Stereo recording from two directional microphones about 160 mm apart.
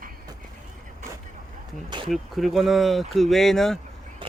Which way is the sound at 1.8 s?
30° right (ahead or behind).